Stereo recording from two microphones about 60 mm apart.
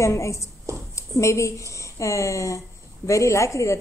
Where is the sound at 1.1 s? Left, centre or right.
Left.